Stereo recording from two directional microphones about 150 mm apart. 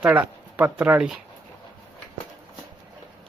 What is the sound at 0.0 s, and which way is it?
Speech, 10° right (ahead or behind).